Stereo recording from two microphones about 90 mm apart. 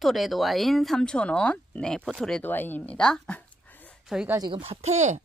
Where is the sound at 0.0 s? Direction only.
Centre (ahead or behind).